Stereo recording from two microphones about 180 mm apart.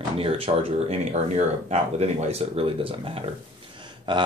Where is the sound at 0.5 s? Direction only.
30° right (ahead or behind).